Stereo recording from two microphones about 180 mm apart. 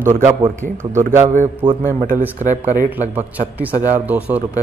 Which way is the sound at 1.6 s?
10° right (ahead or behind).